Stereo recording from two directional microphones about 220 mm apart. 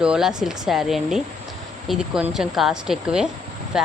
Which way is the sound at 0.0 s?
5° right (ahead or behind).